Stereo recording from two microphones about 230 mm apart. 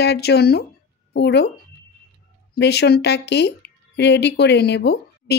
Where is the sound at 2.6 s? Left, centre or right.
Left.